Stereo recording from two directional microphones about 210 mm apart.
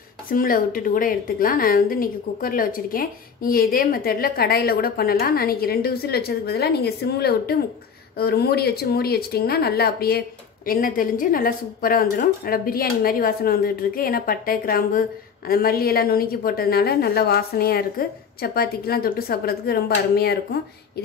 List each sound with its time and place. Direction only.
0.3 s speech: 40° left (ahead or behind)